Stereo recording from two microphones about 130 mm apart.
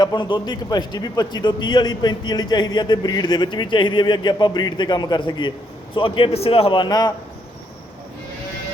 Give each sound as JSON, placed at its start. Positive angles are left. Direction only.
{"t": 0.0, "sound": "a man's voice", "side_deg": 35}
{"t": 6.8, "sound": "a man's voice", "side_deg": 30}